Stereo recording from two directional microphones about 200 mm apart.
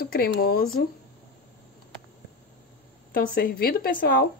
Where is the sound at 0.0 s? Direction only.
50° left (ahead or behind).